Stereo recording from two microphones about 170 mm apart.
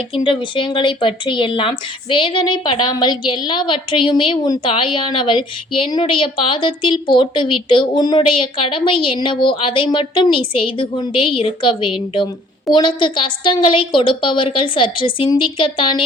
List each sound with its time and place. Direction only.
0.1 s speech: 30° left (ahead or behind)